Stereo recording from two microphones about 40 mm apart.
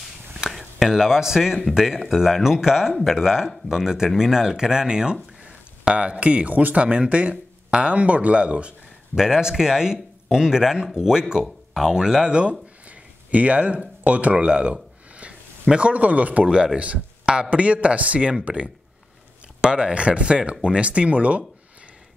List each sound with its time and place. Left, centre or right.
0.5 s speech: centre; by 8.7 s right
9.1 s speech: centre
12.8 s a sound: right
15.7 s a man's voice: right
16.4 s a man's voice: right
19.6 s a man's voice: right